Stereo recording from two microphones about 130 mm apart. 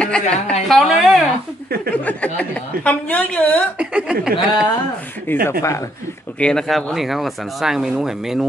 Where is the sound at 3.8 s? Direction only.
10° right (ahead or behind).